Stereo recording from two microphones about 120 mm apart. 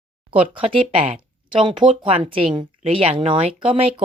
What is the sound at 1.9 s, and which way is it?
Speech, 50° right (ahead or behind).